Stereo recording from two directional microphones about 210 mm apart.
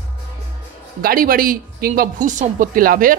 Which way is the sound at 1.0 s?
40° right (ahead or behind).